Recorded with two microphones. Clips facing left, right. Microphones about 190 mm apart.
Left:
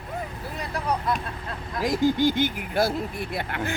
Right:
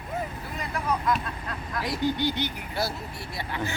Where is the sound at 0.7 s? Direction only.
35° left (ahead or behind).